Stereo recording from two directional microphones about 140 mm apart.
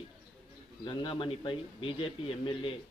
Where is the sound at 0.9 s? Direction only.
35° left (ahead or behind).